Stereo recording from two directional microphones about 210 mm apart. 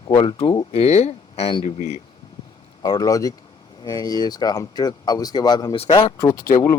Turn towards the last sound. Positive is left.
turn(degrees=45)  # may be behind; listen again after turning